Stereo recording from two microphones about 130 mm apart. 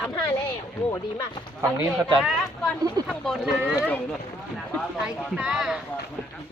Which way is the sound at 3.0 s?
30° right (ahead or behind).